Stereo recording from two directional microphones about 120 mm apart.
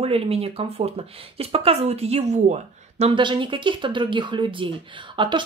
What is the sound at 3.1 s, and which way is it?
Speech, 40° right (ahead or behind).